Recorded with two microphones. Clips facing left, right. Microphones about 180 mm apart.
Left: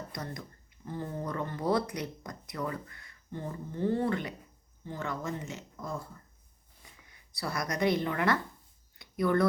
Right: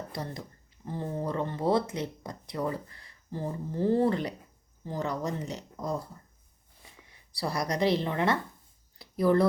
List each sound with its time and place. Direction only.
0.1 s speech: 30° right (ahead or behind)
7.1 s speech: 30° right (ahead or behind)
9.0 s a sound: 30° right (ahead or behind)